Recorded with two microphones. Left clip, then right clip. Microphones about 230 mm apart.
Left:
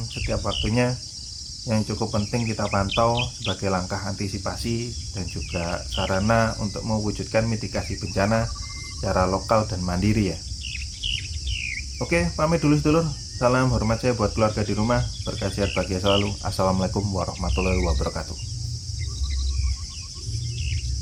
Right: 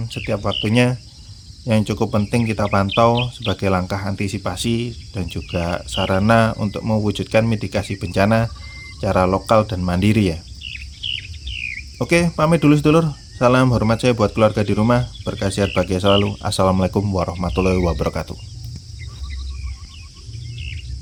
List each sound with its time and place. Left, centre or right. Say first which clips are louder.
0.3 s cricket: right 6 dB; right
6.0 s speech: right 6 dB; right
11.4 s cricket: right 5 dB; left
11.9 s cricket: right 7 dB; right